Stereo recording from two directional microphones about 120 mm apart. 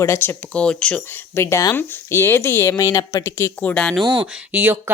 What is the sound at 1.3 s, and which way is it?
Speech, 20° left (ahead or behind).